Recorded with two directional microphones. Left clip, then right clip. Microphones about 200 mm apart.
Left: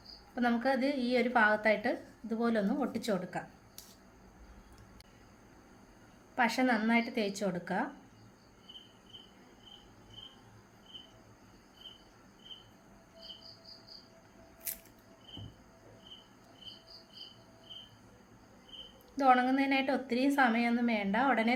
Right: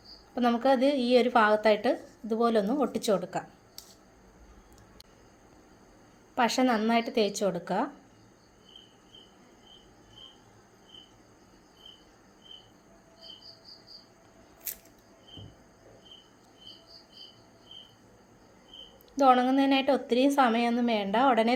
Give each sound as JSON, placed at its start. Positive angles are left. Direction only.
{"t": 0.3, "sound": "a woman's voice", "side_deg": -25}
{"t": 6.3, "sound": "a woman's voice", "side_deg": -30}
{"t": 19.1, "sound": "a woman's voice", "side_deg": -30}